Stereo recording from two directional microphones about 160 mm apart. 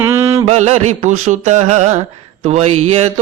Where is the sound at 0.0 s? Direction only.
15° right (ahead or behind).